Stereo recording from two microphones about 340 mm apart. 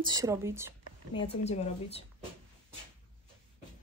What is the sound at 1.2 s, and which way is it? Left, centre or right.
A woman's voice, centre.